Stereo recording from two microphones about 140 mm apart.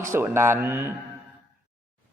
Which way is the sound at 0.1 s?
15° right (ahead or behind).